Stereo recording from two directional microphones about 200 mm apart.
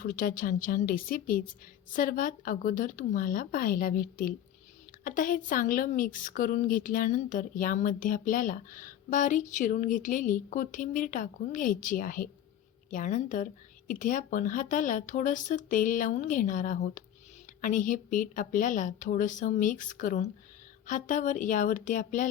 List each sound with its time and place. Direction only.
0.0 s a woman's voice: 45° left (ahead or behind)